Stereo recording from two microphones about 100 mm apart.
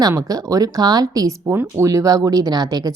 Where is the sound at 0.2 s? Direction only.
40° right (ahead or behind).